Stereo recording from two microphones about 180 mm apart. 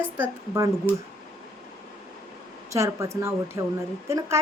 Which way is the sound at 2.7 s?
15° right (ahead or behind).